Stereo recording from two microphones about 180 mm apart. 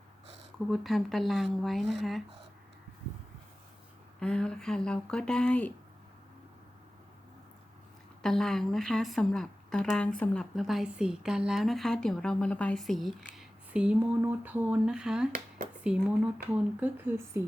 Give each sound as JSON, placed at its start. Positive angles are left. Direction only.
{"t": 0.7, "sound": "a woman's voice", "side_deg": 0}
{"t": 4.2, "sound": "a woman's voice", "side_deg": 5}
{"t": 8.2, "sound": "a woman's voice", "side_deg": 0}
{"t": 15.3, "sound": "a sound", "side_deg": -50}
{"t": 15.8, "sound": "speech", "side_deg": -5}